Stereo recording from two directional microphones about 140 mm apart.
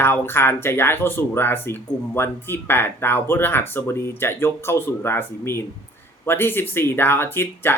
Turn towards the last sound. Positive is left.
turn(degrees=15)  # may be behind; listen again after turning